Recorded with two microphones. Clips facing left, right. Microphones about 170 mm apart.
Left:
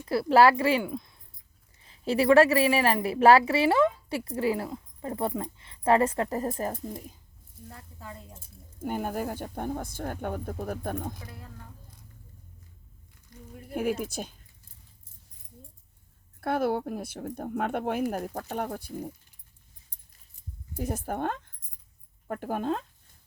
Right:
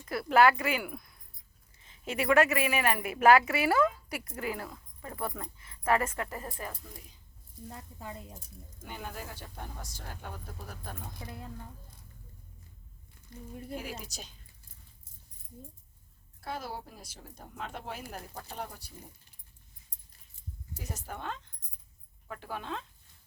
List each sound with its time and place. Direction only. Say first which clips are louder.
0.0 s a woman's voice: left 4 dB; 30° left (ahead or behind)
7.7 s speech: right 1 dB; 20° right (ahead or behind)
8.8 s speech: left 12 dB; 50° left (ahead or behind)
11.2 s speech: right 2 dB; 25° right (ahead or behind)
13.7 s speech: left 14 dB; 55° left (ahead or behind)
16.4 s speech: left 12 dB; 60° left (ahead or behind)
20.7 s speech: left 11 dB; 55° left (ahead or behind)